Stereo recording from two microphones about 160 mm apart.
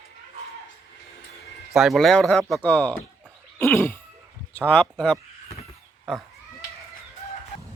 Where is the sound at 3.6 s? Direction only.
15° left (ahead or behind).